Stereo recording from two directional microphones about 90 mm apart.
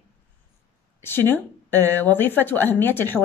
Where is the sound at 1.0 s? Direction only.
25° left (ahead or behind).